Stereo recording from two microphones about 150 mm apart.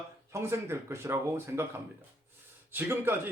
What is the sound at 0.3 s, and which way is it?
A man's voice, 15° right (ahead or behind).